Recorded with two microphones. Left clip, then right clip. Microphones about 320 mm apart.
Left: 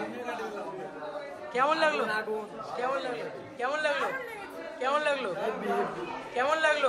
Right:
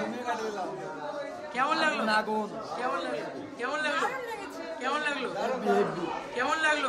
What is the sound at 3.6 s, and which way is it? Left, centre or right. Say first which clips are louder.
A man's voice: left 1 dB; centre.